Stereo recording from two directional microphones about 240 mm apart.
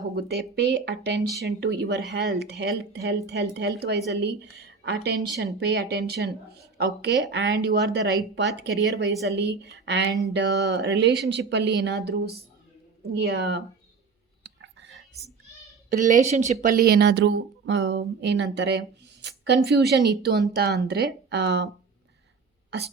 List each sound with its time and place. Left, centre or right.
0.2 s speech: right
14.4 s whispering: right
15.9 s speech: right